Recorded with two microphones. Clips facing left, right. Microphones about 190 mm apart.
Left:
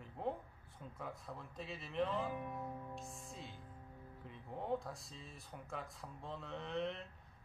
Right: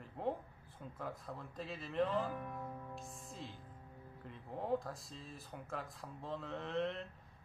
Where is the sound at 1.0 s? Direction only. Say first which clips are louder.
Right 3 dB; centre (ahead or behind).